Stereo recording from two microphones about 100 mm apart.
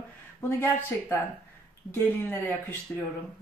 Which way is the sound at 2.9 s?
5° left (ahead or behind).